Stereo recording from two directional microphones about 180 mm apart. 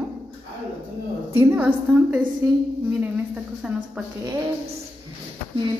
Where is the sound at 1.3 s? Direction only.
15° right (ahead or behind).